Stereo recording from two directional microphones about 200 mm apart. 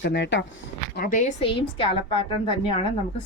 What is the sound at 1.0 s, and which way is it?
A woman's voice, 40° left (ahead or behind).